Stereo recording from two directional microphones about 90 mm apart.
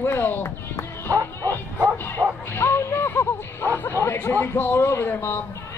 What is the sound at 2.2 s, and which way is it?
Music, 25° right (ahead or behind).